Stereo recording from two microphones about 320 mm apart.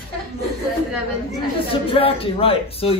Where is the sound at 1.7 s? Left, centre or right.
Centre.